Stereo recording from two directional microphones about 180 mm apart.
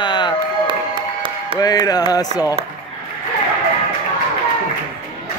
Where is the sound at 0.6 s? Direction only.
25° right (ahead or behind).